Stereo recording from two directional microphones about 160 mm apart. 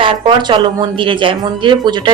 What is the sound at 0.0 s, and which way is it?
A woman's voice, 30° right (ahead or behind).